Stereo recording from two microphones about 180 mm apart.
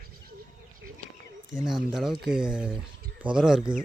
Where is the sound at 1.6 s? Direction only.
Centre (ahead or behind).